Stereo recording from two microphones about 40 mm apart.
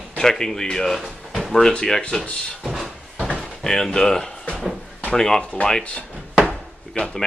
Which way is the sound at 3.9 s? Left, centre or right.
Centre.